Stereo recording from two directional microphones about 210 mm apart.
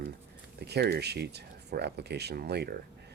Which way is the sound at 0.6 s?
50° right (ahead or behind).